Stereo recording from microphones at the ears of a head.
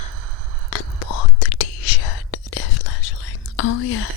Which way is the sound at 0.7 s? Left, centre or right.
Left.